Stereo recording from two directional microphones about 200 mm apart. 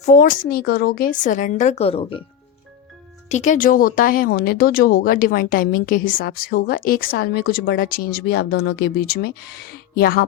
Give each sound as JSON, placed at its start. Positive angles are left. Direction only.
{"t": 0.0, "sound": "a woman's voice", "side_deg": 40}
{"t": 3.2, "sound": "speech", "side_deg": 35}